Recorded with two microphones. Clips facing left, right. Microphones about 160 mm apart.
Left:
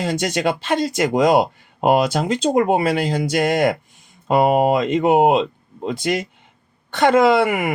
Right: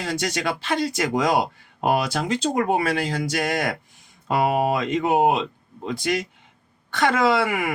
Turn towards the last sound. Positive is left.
turn(degrees=20)  # may be behind; listen again after turning